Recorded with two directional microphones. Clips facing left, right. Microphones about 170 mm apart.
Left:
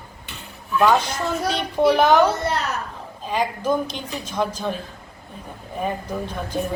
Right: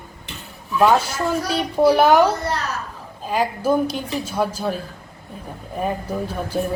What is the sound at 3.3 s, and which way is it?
Speech, 10° right (ahead or behind).